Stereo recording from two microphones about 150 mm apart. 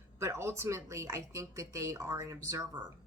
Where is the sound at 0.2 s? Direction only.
20° right (ahead or behind).